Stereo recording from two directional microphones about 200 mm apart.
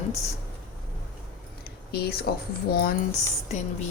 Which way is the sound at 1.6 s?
50° left (ahead or behind).